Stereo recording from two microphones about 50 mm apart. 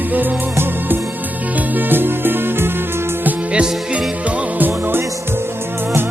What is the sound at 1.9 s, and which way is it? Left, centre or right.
Music, right.